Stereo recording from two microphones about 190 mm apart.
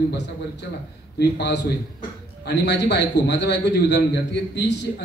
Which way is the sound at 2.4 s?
65° left (ahead or behind).